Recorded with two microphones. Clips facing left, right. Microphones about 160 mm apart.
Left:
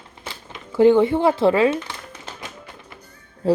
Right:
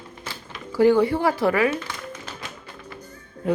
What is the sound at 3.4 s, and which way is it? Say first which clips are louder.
Speech: left 5 dB; 30° left (ahead or behind).